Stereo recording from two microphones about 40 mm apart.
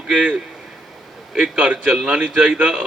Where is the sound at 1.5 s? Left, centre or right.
Right.